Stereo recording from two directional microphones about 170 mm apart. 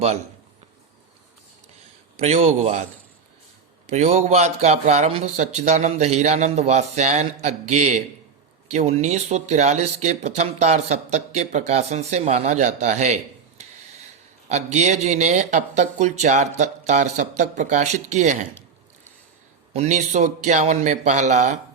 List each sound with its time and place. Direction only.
2.1 s speech: 40° right (ahead or behind)
3.8 s speech: 40° right (ahead or behind)
14.5 s speech: 40° right (ahead or behind)
19.7 s speech: 40° right (ahead or behind)